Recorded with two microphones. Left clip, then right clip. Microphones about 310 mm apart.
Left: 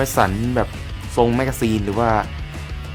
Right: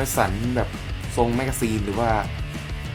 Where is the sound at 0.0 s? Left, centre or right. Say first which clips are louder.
Left 5 dB; left.